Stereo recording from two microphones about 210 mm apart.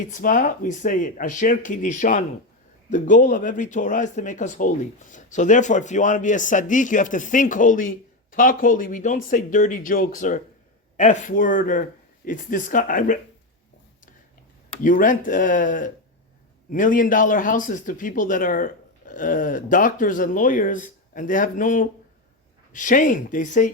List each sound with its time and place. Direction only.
0.0 s speech: 40° left (ahead or behind)
14.8 s speech: 40° left (ahead or behind)